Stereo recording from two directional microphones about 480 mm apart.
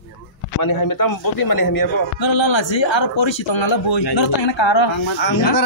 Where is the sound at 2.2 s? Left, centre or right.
Left.